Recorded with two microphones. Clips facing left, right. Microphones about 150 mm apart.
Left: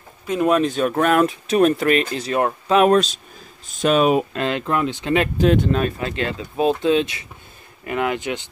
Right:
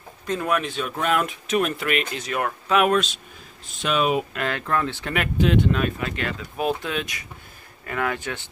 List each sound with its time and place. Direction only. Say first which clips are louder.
0.3 s speech: left 5 dB; 10° left (ahead or behind)
0.7 s speech: left 7 dB; 45° left (ahead or behind)
4.4 s speech: left 4 dB; 20° left (ahead or behind)
5.4 s speech: even; 40° left (ahead or behind); by 8.5 s 20° left (ahead or behind)